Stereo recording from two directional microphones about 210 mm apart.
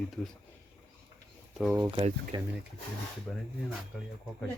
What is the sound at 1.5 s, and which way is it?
Speech, centre (ahead or behind).